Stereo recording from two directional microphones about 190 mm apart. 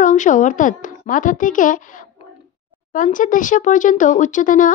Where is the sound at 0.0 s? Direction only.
40° left (ahead or behind).